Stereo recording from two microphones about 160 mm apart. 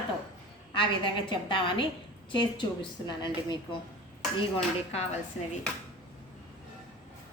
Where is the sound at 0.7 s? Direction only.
30° left (ahead or behind).